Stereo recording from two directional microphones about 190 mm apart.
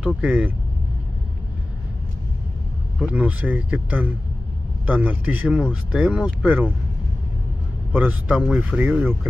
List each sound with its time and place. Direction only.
0.0 s speech: 5° right (ahead or behind)
3.0 s speech: 5° right (ahead or behind)
7.9 s speech: 5° right (ahead or behind)